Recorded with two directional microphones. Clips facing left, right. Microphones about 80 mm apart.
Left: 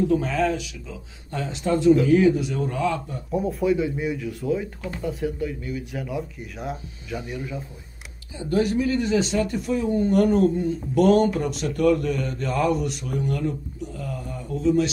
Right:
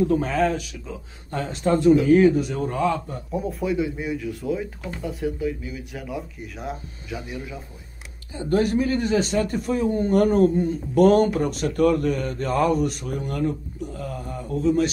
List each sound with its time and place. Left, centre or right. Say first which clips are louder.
0.2 s a man's voice: right 1 dB; right
3.3 s speech: left 4 dB; centre
8.4 s a man's voice: right 1 dB; right
14.5 s a man's voice: right 2 dB; right